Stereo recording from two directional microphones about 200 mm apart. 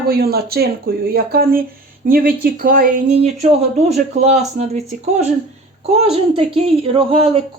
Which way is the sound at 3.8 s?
35° right (ahead or behind).